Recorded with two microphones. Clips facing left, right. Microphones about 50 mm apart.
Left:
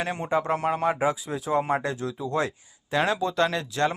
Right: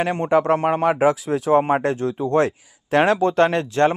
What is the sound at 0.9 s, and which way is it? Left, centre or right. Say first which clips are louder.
Speech: right 7 dB; right.